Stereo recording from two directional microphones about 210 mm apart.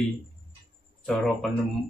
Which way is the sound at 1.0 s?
Centre (ahead or behind).